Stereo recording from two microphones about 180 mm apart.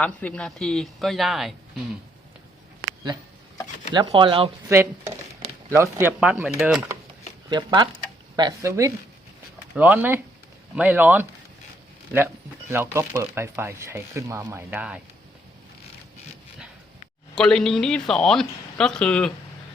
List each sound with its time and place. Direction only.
0.0 s speech: 10° left (ahead or behind)
3.9 s speech: 30° right (ahead or behind)
4.7 s speech: 15° right (ahead or behind)
7.5 s speech: 25° right (ahead or behind); by 11.3 s 10° right (ahead or behind)
12.7 s speech: 15° right (ahead or behind)
17.3 s speech: 5° left (ahead or behind)